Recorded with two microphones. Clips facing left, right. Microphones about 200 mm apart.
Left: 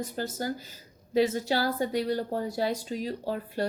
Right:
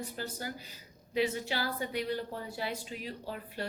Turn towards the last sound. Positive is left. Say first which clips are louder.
# left 8 dB
turn(degrees=40)  # may be behind; listen again after turning